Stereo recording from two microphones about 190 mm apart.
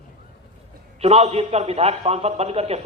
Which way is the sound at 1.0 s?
35° right (ahead or behind).